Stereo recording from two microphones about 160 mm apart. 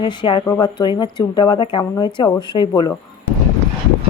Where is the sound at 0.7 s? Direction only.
25° left (ahead or behind).